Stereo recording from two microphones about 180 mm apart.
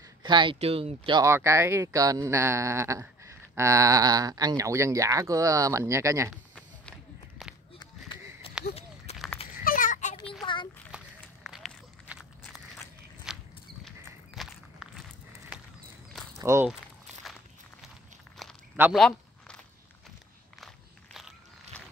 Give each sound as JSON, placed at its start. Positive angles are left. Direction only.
{"t": 0.2, "sound": "speech", "side_deg": -25}
{"t": 1.2, "sound": "speech", "side_deg": -15}
{"t": 6.3, "sound": "walk", "side_deg": 0}
{"t": 8.5, "sound": "a sound", "side_deg": 30}
{"t": 9.7, "sound": "a sound", "side_deg": 45}
{"t": 10.4, "sound": "a sound", "side_deg": 25}
{"t": 10.9, "sound": "run", "side_deg": -5}
{"t": 11.4, "sound": "walk", "side_deg": 0}
{"t": 16.3, "sound": "walk", "side_deg": -15}
{"t": 17.3, "sound": "walk", "side_deg": 0}
{"t": 18.8, "sound": "a sound", "side_deg": 0}
{"t": 20.6, "sound": "walk", "side_deg": 0}